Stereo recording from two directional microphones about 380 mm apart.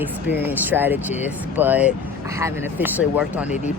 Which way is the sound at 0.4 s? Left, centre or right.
Centre.